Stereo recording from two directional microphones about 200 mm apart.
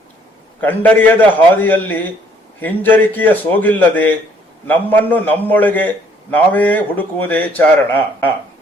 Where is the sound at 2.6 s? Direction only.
10° left (ahead or behind).